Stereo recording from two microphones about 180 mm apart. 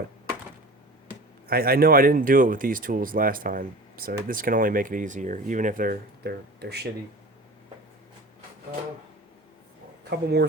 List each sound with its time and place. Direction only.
1.5 s speech: 60° right (ahead or behind)
10.0 s speech: 65° right (ahead or behind)